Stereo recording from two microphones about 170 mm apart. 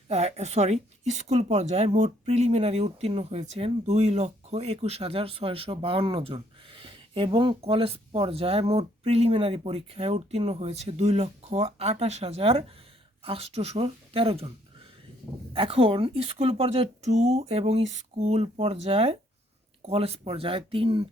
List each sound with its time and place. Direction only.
0.1 s speech: 40° right (ahead or behind)
15.5 s speech: 30° right (ahead or behind)